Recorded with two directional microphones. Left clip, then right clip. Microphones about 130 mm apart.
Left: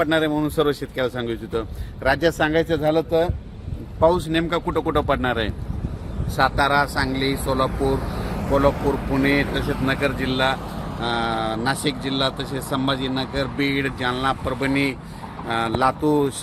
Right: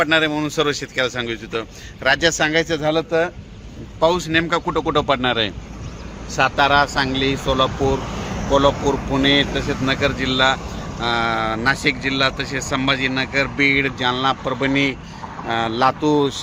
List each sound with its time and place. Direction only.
0.0 s speech: 35° left (ahead or behind); by 3.3 s 15° left (ahead or behind)
4.0 s speech: 20° right (ahead or behind); by 7.1 s 35° right (ahead or behind)
8.4 s speech: 55° right (ahead or behind)
9.6 s speech: 35° right (ahead or behind)